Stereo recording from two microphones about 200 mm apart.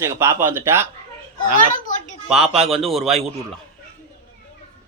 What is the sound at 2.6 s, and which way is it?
Speech, centre (ahead or behind).